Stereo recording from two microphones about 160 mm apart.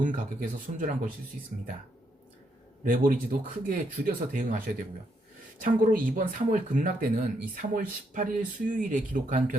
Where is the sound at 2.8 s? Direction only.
60° right (ahead or behind).